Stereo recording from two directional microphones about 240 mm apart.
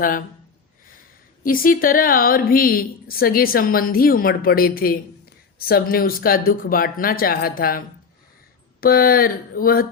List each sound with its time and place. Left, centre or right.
0.0 s a woman's voice: left
1.5 s a woman's voice: left